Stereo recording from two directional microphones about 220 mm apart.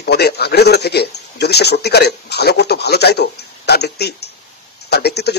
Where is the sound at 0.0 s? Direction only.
45° left (ahead or behind).